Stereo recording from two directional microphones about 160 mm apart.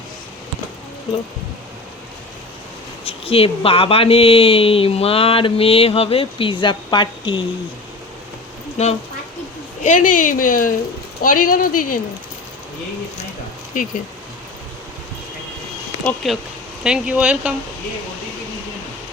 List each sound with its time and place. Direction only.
3.0 s speech: 35° left (ahead or behind)
8.8 s speech: 40° left (ahead or behind)
9.8 s speech: 55° left (ahead or behind)
13.7 s speech: 55° left (ahead or behind)
16.2 s speech: centre (ahead or behind)